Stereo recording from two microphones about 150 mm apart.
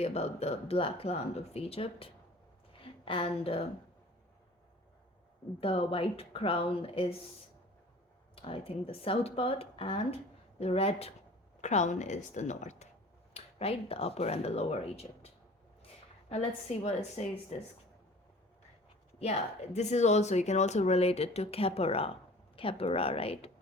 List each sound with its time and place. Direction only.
0.0 s a woman's voice: 45° left (ahead or behind)
5.5 s speech: 40° left (ahead or behind)
8.4 s speech: 40° left (ahead or behind)
13.3 s speech: 40° left (ahead or behind)
16.3 s speech: 45° left (ahead or behind)
19.2 s speech: 45° left (ahead or behind)